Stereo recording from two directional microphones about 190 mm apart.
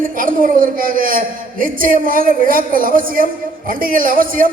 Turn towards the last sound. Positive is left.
turn(degrees=-45)  # may be behind; listen again after turning